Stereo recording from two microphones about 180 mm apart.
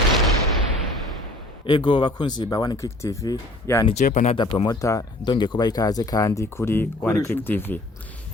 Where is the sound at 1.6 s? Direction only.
25° left (ahead or behind).